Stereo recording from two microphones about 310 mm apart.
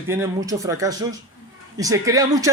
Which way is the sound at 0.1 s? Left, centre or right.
Centre.